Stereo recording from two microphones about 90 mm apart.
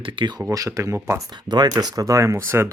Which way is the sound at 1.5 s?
50° right (ahead or behind).